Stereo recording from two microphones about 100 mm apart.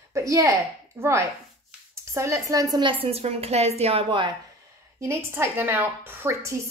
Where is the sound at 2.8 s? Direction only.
65° right (ahead or behind); by 4.0 s 85° right.